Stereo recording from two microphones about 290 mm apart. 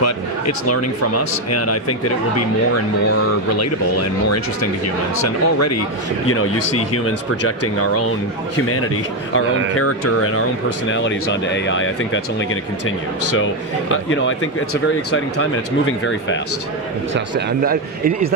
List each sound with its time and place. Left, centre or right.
0.0 s a man's voice: left
5.1 s speech: left
6.2 s speech: left
10.9 s speech: left
17.6 s speech: right